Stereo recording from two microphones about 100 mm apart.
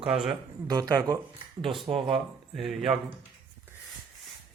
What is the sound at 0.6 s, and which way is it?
Speech, 40° right (ahead or behind).